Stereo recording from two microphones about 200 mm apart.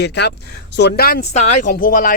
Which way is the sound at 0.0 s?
55° left (ahead or behind).